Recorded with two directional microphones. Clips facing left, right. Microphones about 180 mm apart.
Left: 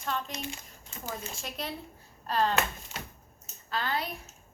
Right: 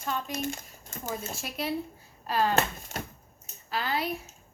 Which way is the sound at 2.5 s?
45° right (ahead or behind).